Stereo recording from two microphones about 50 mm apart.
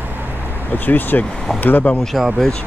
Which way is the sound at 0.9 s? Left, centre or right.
Left.